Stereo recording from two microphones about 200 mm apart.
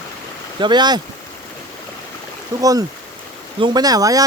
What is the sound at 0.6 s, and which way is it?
Speech, 20° right (ahead or behind).